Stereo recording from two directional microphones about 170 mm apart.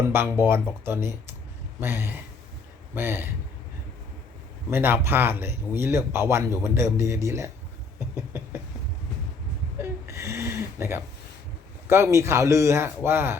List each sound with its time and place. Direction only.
0.1 s speech: 15° right (ahead or behind)
4.7 s speech: 10° right (ahead or behind)
7.9 s a sound: 10° right (ahead or behind)
9.7 s speech: 15° right (ahead or behind)